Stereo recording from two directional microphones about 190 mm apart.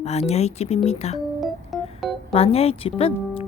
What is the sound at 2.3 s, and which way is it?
Speech, 30° left (ahead or behind).